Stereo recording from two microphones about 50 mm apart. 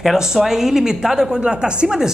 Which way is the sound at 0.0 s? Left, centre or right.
Centre.